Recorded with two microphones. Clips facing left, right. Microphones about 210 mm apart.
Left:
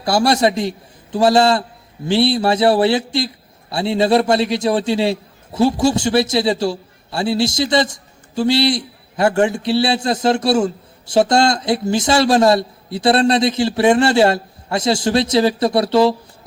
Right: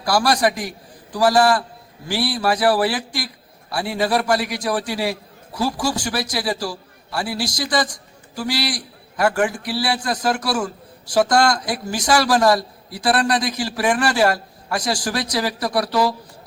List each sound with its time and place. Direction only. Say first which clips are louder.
0.0 s a man's voice: left 3 dB; 25° left (ahead or behind)